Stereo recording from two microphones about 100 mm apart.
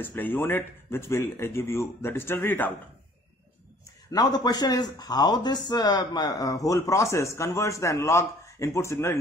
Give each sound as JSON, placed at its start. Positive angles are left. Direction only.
{"t": 0.0, "sound": "speech", "side_deg": 20}
{"t": 4.1, "sound": "speech", "side_deg": 40}